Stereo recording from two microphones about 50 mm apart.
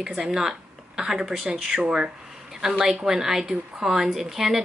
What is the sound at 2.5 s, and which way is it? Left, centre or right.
Speech, centre.